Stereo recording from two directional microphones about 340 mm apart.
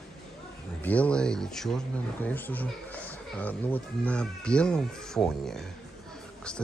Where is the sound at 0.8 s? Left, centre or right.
Centre.